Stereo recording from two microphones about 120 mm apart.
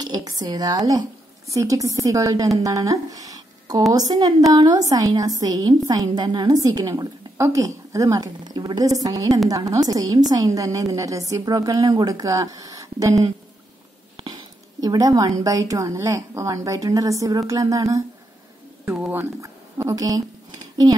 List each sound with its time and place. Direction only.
0.0 s a woman's voice: 30° right (ahead or behind)
14.8 s a woman's voice: 30° right (ahead or behind)
18.9 s speech: 10° right (ahead or behind)
19.4 s a sound: 30° right (ahead or behind)